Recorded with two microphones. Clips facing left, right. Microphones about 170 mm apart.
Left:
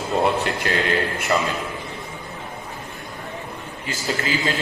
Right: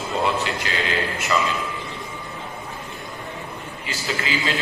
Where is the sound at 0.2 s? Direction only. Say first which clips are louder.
Left 2 dB; 50° left (ahead or behind).